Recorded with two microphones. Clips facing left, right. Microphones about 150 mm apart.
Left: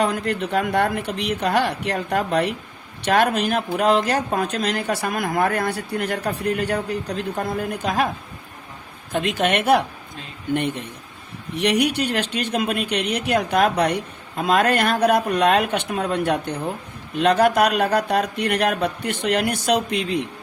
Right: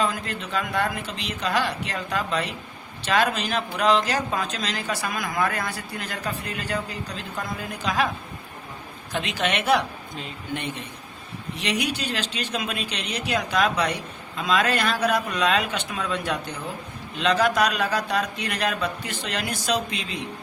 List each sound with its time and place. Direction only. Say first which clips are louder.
0.0 s speech: left 5 dB; 65° left (ahead or behind)
9.1 s a woman's voice: left 5 dB; 50° left (ahead or behind)